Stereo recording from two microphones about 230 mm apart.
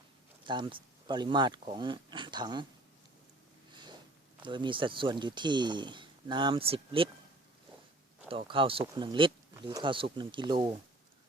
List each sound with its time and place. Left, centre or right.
0.4 s speech: right
4.4 s speech: right
8.3 s speech: right